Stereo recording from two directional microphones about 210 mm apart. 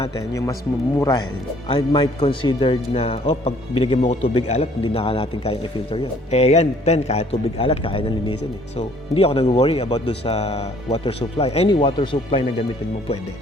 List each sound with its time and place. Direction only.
0.2 s speech: 15° left (ahead or behind)
1.6 s a man's voice: 25° left (ahead or behind)
9.1 s a man's voice: 30° left (ahead or behind)